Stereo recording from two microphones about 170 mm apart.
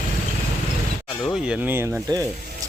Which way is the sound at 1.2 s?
Centre (ahead or behind).